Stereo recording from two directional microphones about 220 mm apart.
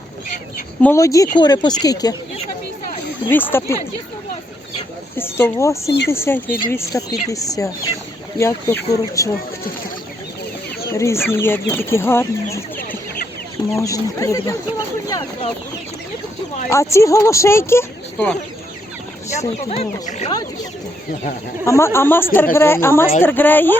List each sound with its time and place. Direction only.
0.8 s speech: 10° left (ahead or behind)
3.2 s speech: 10° left (ahead or behind)
5.1 s speech: 10° left (ahead or behind)
10.9 s speech: 15° left (ahead or behind)
16.6 s speech: 15° left (ahead or behind)
19.3 s speech: 30° left (ahead or behind)
21.6 s speech: 10° left (ahead or behind)